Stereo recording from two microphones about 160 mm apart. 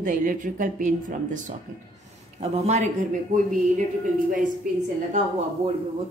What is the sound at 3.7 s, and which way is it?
Speech, 55° right (ahead or behind).